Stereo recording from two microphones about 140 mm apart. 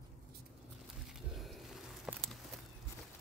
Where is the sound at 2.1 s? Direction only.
5° right (ahead or behind).